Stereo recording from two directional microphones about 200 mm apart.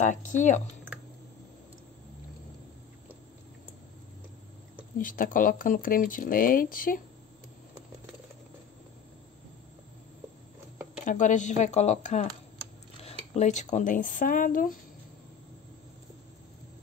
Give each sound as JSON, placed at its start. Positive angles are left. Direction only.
{"t": 0.0, "sound": "speech", "side_deg": 40}
{"t": 4.9, "sound": "speech", "side_deg": 45}
{"t": 11.1, "sound": "speech", "side_deg": 40}
{"t": 13.4, "sound": "speech", "side_deg": 35}